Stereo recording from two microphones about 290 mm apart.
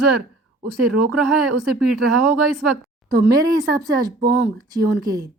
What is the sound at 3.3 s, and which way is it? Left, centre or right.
Speech, centre.